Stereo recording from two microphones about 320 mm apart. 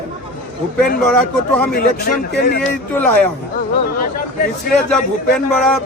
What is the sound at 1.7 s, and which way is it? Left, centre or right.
Speech, left.